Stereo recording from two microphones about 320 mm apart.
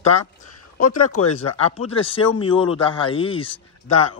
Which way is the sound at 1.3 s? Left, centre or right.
Centre.